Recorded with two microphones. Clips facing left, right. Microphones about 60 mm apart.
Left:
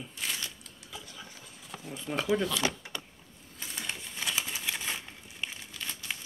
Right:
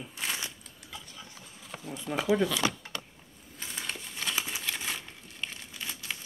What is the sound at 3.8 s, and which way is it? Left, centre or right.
Crumpling, centre.